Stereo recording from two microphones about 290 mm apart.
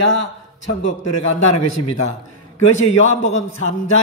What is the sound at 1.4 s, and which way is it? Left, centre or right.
Speech, left.